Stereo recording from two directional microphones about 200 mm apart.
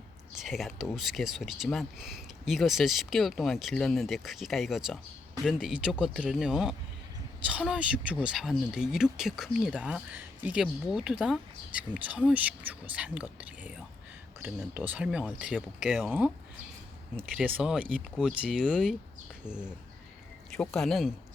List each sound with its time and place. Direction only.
0.3 s speech: centre (ahead or behind)
20.5 s speech: 5° left (ahead or behind)